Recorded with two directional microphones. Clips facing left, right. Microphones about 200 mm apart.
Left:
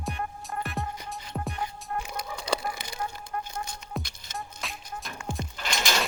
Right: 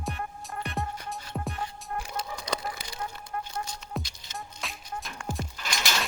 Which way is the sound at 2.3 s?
30° left (ahead or behind).